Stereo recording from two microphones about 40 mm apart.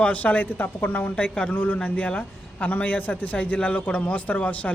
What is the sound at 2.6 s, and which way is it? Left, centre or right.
Speech, left.